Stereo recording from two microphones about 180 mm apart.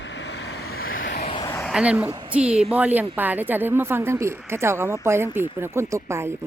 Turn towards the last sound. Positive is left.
turn(degrees=-15)  # may be behind; listen again after turning